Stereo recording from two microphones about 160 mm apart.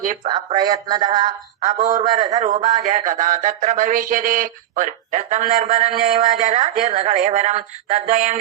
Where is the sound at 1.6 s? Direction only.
50° right (ahead or behind).